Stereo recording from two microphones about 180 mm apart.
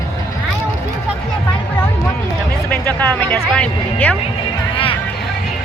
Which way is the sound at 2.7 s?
10° left (ahead or behind).